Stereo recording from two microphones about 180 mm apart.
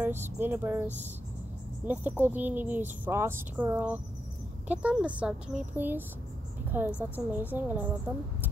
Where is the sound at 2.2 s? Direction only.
10° right (ahead or behind).